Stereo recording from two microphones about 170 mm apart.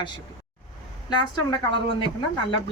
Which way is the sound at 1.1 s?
30° left (ahead or behind).